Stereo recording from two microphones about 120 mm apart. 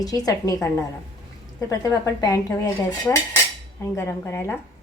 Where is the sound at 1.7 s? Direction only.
30° left (ahead or behind).